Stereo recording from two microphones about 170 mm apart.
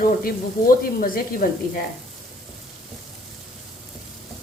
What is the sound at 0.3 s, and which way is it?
Speech, 60° left (ahead or behind).